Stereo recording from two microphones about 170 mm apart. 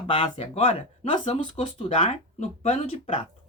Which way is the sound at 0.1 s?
30° left (ahead or behind).